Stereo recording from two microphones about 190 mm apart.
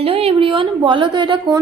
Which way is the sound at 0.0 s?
30° right (ahead or behind).